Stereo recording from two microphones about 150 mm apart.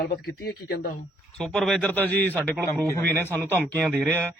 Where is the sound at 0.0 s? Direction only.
90° left.